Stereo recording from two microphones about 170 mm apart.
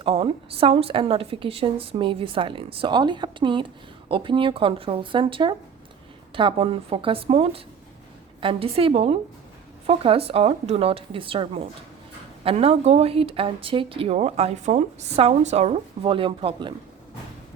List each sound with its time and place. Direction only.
0.0 s speech: 35° right (ahead or behind)